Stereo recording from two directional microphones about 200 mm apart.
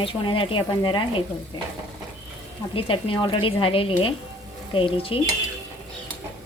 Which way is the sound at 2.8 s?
25° left (ahead or behind).